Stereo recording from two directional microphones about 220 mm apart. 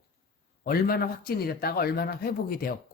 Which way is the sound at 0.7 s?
45° left (ahead or behind).